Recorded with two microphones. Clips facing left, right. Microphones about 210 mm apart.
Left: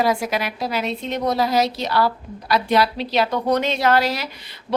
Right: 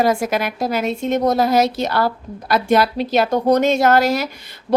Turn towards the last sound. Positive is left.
turn(degrees=-45)  # may be behind; listen again after turning